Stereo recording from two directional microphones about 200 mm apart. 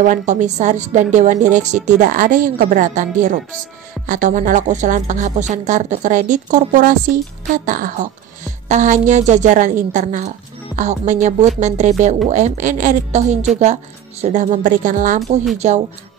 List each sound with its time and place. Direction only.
0.0 s speech: 40° right (ahead or behind)